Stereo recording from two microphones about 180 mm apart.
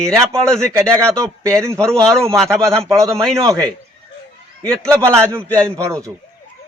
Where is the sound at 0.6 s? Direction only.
15° right (ahead or behind).